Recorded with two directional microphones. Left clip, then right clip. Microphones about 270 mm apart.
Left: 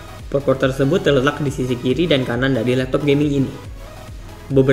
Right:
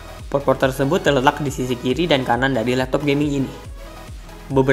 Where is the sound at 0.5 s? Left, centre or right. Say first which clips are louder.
Left 1 dB; centre.